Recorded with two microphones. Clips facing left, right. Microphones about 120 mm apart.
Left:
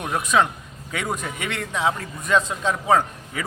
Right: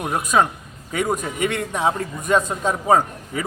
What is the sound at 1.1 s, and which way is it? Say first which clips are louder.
A man's voice: right 6 dB; 45° right (ahead or behind).